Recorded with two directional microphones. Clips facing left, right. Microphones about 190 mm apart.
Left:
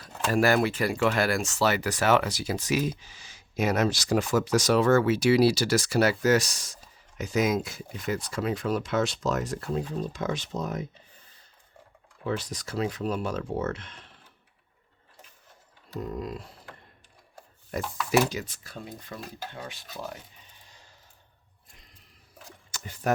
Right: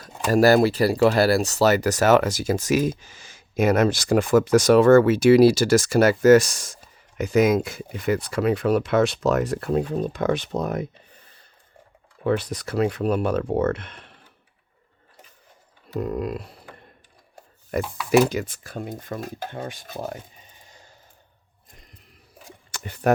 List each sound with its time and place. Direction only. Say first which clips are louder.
0.3 s speech: right 7 dB; 40° right (ahead or behind); by 10.8 s 60° right (ahead or behind)
12.2 s speech: right 8 dB; 60° right (ahead or behind)
16.0 s speech: right 7 dB; 65° right (ahead or behind)
17.8 s speech: even; 5° right (ahead or behind)
18.3 s speech: right 7 dB; 55° right (ahead or behind)
22.7 s speech: right 7 dB; 65° right (ahead or behind)